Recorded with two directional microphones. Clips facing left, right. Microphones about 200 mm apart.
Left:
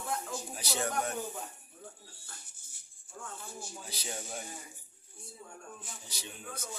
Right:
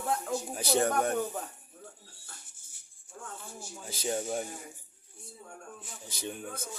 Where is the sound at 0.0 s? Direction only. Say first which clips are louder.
Right 6 dB; 55° right (ahead or behind).